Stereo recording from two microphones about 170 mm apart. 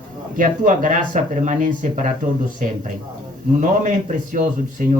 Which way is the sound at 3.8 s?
50° right (ahead or behind).